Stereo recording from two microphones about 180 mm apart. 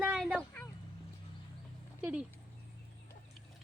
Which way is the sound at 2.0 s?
5° right (ahead or behind).